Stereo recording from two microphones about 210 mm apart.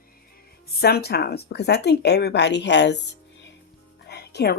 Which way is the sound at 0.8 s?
50° left (ahead or behind).